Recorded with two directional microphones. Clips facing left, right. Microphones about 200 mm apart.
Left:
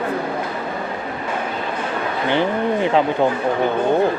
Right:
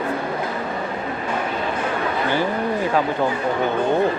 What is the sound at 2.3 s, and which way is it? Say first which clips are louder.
Speech: left 5 dB; 20° left (ahead or behind).